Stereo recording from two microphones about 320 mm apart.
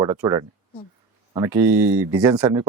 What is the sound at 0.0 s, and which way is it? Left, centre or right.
Speech, centre.